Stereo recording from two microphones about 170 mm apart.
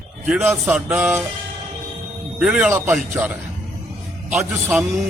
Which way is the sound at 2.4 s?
5° right (ahead or behind).